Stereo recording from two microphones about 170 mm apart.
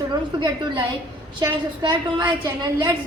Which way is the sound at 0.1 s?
25° right (ahead or behind).